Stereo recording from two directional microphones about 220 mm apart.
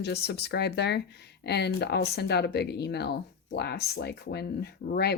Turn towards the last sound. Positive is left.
turn(degrees=50)  # may be behind; listen again after turning